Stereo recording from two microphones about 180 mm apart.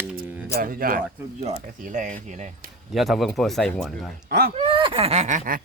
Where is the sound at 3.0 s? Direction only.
Centre (ahead or behind).